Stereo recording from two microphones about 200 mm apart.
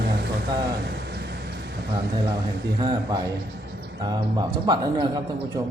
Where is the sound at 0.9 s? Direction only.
55° right (ahead or behind).